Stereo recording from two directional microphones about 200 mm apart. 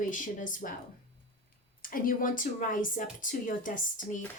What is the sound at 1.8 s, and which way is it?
Speech, 45° left (ahead or behind).